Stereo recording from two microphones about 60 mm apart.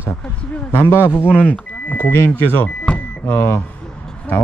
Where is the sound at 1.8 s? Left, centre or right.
Left.